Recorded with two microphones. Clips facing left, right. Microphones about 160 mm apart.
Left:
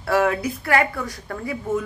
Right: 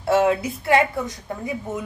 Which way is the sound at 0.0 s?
20° right (ahead or behind).